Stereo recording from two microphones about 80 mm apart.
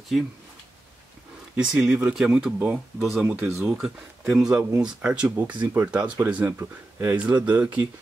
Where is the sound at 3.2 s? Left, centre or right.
Right.